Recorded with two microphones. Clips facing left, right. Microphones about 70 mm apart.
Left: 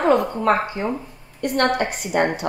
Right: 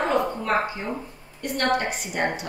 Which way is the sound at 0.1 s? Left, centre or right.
Left.